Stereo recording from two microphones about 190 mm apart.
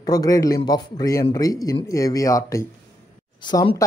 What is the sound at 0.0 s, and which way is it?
Speech, 20° left (ahead or behind).